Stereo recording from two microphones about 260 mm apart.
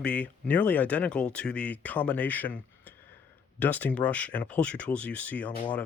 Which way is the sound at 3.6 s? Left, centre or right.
Centre.